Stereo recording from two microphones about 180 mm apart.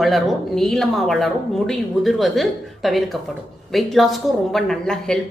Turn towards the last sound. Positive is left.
turn(degrees=5)  # may be behind; listen again after turning